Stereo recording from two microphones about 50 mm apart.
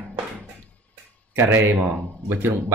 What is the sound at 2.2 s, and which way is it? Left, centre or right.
Speech, right.